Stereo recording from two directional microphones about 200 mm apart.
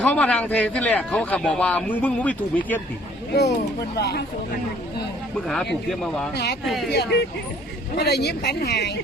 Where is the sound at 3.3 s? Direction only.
55° left (ahead or behind).